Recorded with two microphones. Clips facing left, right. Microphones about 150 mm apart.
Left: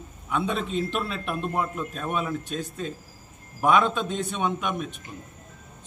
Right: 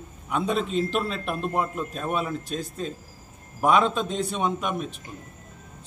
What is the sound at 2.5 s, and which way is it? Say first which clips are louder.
A man's voice: right 1 dB; 35° right (ahead or behind).